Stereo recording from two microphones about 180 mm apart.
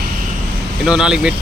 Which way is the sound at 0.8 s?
5° right (ahead or behind).